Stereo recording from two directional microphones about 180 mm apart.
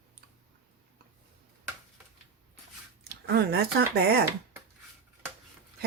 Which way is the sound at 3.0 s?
60° right (ahead or behind).